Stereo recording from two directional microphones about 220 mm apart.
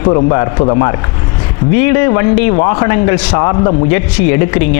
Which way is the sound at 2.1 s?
25° left (ahead or behind).